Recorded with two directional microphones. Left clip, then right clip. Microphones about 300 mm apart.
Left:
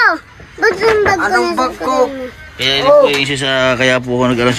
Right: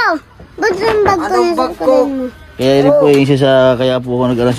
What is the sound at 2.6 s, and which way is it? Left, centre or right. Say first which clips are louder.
Speech: left 1 dB; centre.